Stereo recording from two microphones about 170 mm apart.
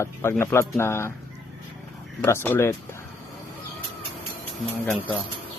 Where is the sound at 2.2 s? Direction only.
15° left (ahead or behind).